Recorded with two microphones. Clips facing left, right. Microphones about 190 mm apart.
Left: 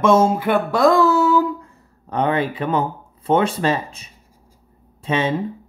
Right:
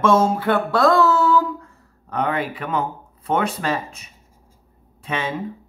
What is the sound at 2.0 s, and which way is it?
Speech, 25° left (ahead or behind).